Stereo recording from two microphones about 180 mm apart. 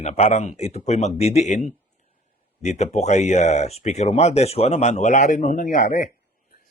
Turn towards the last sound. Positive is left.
turn(degrees=50)  # may be behind; listen again after turning